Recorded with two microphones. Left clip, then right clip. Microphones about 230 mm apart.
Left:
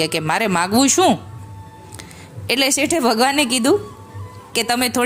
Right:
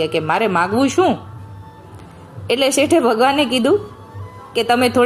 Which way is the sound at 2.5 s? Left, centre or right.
Left.